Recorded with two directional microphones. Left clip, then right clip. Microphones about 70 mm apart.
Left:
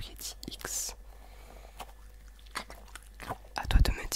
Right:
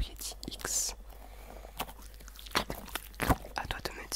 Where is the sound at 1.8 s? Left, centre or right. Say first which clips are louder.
Right 8 dB; right.